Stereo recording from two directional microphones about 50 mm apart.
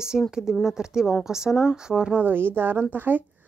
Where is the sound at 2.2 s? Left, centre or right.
Right.